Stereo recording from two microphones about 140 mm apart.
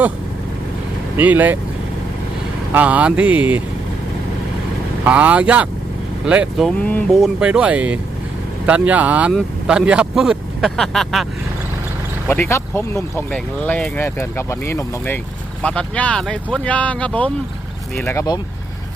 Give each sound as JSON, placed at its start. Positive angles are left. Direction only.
{"t": 1.1, "sound": "speech", "side_deg": -10}
{"t": 2.7, "sound": "speech", "side_deg": -10}
{"t": 5.0, "sound": "speech", "side_deg": -10}
{"t": 6.7, "sound": "speech", "side_deg": 10}
{"t": 7.2, "sound": "speech", "side_deg": -5}
{"t": 12.3, "sound": "speech", "side_deg": 20}